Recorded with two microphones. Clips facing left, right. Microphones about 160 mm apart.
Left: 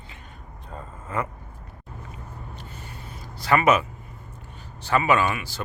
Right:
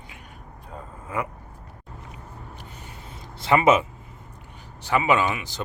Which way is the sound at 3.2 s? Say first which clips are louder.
Right 1 dB; 25° right (ahead or behind).